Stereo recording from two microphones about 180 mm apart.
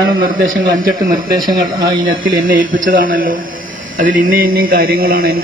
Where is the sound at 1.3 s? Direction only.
20° right (ahead or behind).